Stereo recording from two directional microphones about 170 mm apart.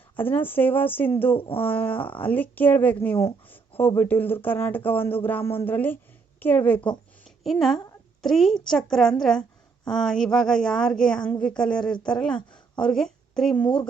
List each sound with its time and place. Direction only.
0.2 s speech: 10° left (ahead or behind)
1.4 s speech: 30° left (ahead or behind)
1.6 s a woman's voice: 10° left (ahead or behind)